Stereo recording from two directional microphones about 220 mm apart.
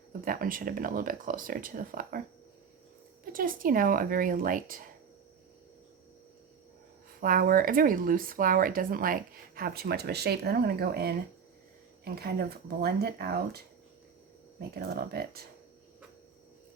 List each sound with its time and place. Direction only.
0.1 s speech: 40° right (ahead or behind)
3.3 s speech: 40° right (ahead or behind)
7.2 s speech: 40° right (ahead or behind)
14.8 s speech: 45° right (ahead or behind)